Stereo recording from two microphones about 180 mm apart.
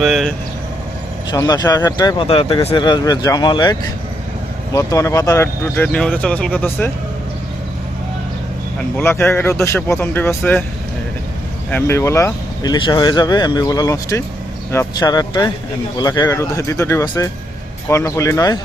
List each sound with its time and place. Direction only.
0.0 s speech: centre (ahead or behind)
1.3 s speech: 20° left (ahead or behind)
9.0 s speech: 10° left (ahead or behind)
11.7 s speech: 15° left (ahead or behind)